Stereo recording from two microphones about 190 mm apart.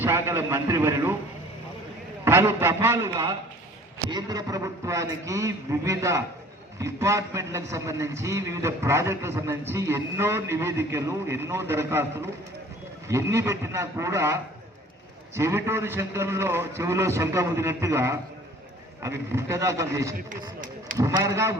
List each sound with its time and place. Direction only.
0.0 s a man's voice: 10° right (ahead or behind)
2.2 s a man's voice: 10° right (ahead or behind)
15.4 s a man's voice: 15° right (ahead or behind)